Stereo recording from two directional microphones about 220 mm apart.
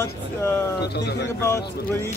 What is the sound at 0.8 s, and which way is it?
Speech, 50° left (ahead or behind).